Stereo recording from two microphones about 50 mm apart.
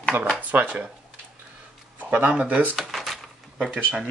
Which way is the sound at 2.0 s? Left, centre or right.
Right.